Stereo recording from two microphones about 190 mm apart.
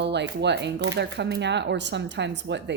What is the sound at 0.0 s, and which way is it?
Speech, 65° right (ahead or behind).